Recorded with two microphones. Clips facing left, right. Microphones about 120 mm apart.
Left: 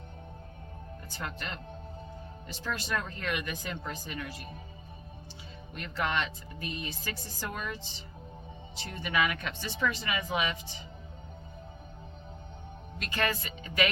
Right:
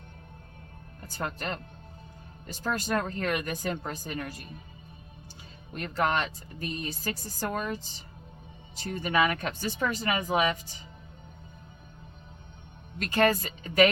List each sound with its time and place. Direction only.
1.0 s speech: 40° right (ahead or behind)
5.7 s speech: 40° right (ahead or behind)
13.0 s speech: 40° right (ahead or behind)